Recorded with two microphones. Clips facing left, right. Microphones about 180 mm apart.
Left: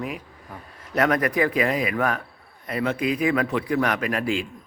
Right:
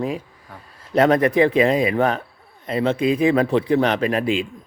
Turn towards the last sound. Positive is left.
turn(degrees=-20)  # may be behind; listen again after turning